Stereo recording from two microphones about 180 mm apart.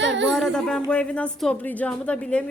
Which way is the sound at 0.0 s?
85° right.